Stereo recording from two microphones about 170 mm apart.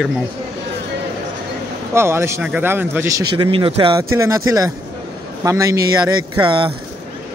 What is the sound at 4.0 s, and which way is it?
Speech, 20° right (ahead or behind).